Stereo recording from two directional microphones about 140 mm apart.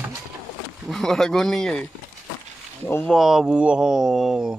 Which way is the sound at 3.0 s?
Centre (ahead or behind).